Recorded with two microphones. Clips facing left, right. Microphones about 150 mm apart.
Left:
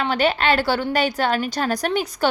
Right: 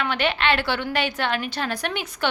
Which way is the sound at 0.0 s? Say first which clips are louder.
Left 4 dB; 35° left (ahead or behind).